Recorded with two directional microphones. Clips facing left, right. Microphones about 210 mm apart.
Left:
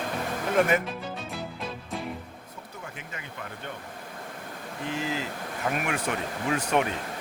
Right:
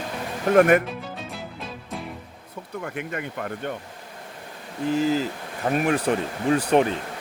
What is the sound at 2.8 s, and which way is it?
Speech, 60° right (ahead or behind).